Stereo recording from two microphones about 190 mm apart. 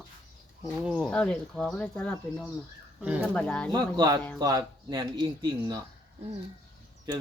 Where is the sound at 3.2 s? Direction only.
5° left (ahead or behind).